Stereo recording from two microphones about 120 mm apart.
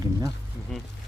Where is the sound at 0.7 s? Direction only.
Centre (ahead or behind).